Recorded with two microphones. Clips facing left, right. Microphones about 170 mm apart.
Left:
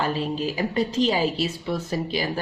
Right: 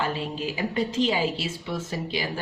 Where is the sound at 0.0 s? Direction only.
40° left (ahead or behind).